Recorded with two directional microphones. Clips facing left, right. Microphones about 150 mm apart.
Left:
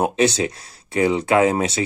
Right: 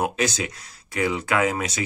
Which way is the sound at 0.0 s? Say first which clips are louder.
Left 6 dB; 25° left (ahead or behind).